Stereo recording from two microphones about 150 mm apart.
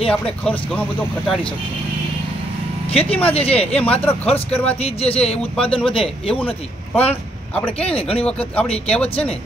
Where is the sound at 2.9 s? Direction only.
40° left (ahead or behind).